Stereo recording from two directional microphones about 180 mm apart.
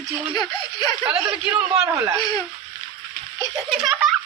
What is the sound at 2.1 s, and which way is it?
Speech, 20° left (ahead or behind).